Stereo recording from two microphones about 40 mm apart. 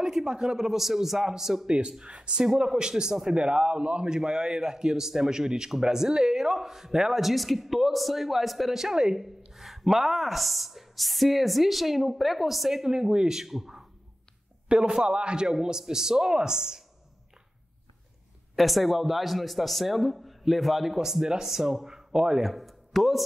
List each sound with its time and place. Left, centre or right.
0.0 s speech: centre
2.0 s a man's voice: right
3.3 s a man's voice: right
4.1 s a woman's voice: centre
14.7 s a man's voice: centre
18.6 s a woman's voice: centre
22.5 s a sound: centre